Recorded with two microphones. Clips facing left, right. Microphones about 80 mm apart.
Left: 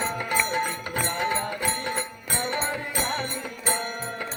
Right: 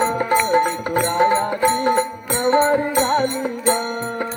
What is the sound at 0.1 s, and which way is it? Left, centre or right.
Music, right.